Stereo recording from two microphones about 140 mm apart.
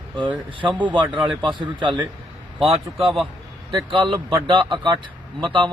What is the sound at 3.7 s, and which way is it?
Speech, 35° right (ahead or behind).